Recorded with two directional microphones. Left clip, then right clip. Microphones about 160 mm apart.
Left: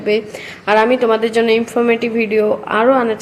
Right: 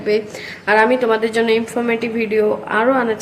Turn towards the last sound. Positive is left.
turn(degrees=15)  # may be behind; listen again after turning